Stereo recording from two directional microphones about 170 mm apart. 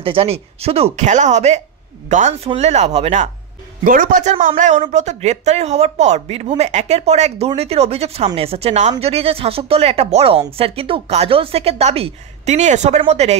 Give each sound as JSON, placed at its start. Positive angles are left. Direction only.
{"t": 0.0, "sound": "speech", "side_deg": -35}
{"t": 3.8, "sound": "a man's voice", "side_deg": -55}